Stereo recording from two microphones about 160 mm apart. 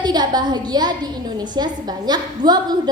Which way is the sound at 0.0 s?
25° right (ahead or behind).